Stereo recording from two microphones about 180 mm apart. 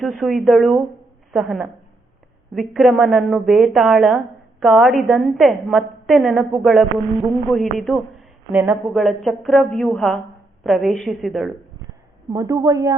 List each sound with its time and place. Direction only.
0.0 s a woman's voice: centre (ahead or behind)
8.5 s a woman's voice: 10° right (ahead or behind)
12.3 s a woman's voice: 20° right (ahead or behind)